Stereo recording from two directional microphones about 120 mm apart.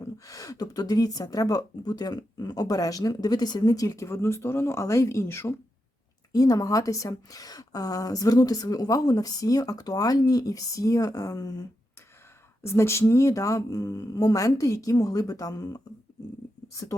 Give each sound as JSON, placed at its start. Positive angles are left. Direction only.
{"t": 0.3, "sound": "speech", "side_deg": 30}
{"t": 12.6, "sound": "speech", "side_deg": 20}